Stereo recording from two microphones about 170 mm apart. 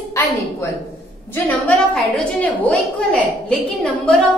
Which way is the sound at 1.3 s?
10° left (ahead or behind).